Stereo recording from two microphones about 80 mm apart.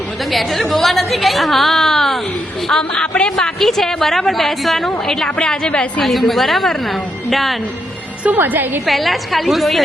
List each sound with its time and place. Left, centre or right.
0.3 s a woman's voice: centre
6.0 s a woman's voice: centre
8.2 s a woman's voice: right
8.9 s a woman's voice: centre